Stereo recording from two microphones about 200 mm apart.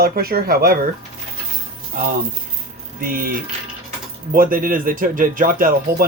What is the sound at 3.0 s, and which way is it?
Speech, 45° right (ahead or behind).